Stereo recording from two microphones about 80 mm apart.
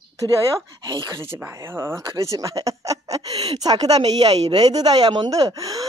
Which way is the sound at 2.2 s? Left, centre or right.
Right.